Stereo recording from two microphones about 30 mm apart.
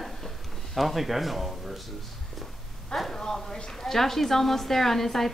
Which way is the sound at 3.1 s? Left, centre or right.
Centre.